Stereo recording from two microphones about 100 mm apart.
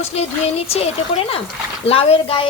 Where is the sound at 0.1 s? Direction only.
90° left.